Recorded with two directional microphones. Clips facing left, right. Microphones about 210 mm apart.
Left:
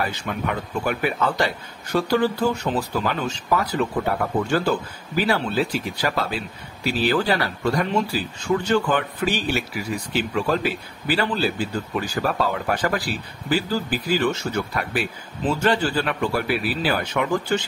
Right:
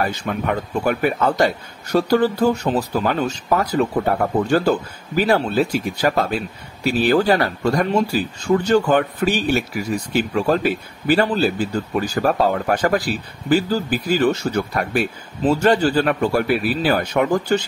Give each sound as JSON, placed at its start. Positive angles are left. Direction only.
{"t": 0.0, "sound": "a man's voice", "side_deg": -45}